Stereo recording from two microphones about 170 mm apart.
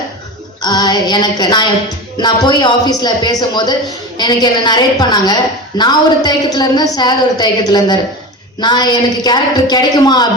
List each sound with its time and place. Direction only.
0.6 s a woman's voice: 25° left (ahead or behind)